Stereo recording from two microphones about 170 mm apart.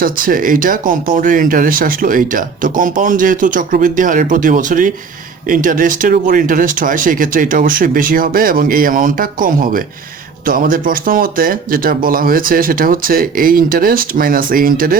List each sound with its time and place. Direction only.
0.0 s speech: 55° right (ahead or behind)